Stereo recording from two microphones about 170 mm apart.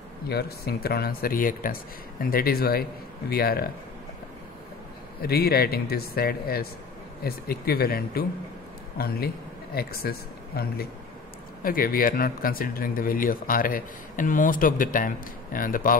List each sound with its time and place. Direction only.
0.3 s speech: 70° left (ahead or behind)
5.2 s speech: 65° left (ahead or behind)